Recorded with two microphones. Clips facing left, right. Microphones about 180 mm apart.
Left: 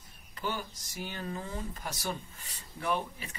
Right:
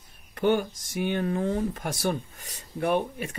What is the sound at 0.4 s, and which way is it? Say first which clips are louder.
Speech: right 13 dB; 60° right (ahead or behind).